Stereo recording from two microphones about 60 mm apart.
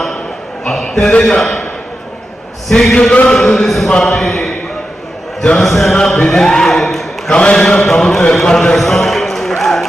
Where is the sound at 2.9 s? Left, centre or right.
Centre.